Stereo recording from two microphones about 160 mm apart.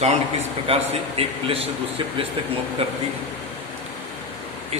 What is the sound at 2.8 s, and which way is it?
Speech, 35° right (ahead or behind).